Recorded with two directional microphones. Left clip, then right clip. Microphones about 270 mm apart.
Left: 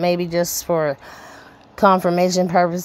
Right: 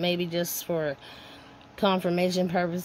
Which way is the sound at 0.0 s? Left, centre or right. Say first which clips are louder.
Left 8 dB; left.